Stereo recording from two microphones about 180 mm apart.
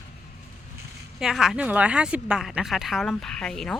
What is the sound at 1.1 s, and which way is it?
A woman's voice, centre (ahead or behind).